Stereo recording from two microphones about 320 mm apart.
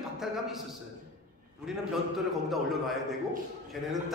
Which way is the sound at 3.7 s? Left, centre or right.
Centre.